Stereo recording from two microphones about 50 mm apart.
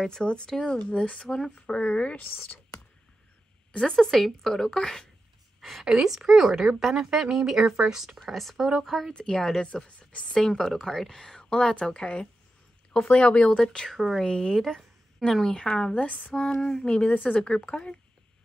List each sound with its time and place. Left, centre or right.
0.0 s speech: centre
0.7 s a woman's voice: left
3.9 s speech: centre
5.6 s a woman's voice: centre
8.3 s speech: centre
9.1 s a woman's voice: centre
13.7 s speech: centre
13.9 s speech: centre
14.2 s speech: centre
15.9 s a woman's voice: left
16.6 s speech: centre
17.1 s a woman's voice: left
17.4 s a woman's voice: centre